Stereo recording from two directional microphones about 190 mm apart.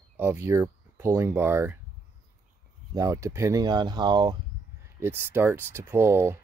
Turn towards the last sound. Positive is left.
turn(degrees=-10)  # may be behind; listen again after turning